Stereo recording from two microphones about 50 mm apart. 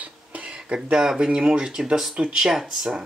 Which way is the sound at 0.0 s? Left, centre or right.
Right.